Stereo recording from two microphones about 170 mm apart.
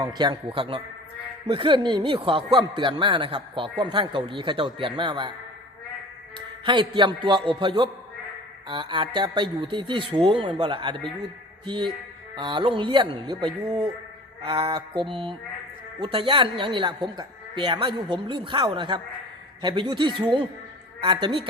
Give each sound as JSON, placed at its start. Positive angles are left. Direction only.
{"t": 0.0, "sound": "speech", "side_deg": -25}
{"t": 6.7, "sound": "speech", "side_deg": -30}
{"t": 11.6, "sound": "music", "side_deg": -30}
{"t": 12.4, "sound": "speech", "side_deg": -30}
{"t": 14.4, "sound": "mantra", "side_deg": -30}
{"t": 16.0, "sound": "speech", "side_deg": -30}